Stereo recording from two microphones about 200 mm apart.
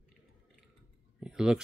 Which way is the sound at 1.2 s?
5° right (ahead or behind).